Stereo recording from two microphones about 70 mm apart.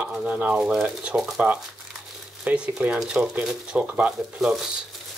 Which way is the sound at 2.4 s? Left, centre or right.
Centre.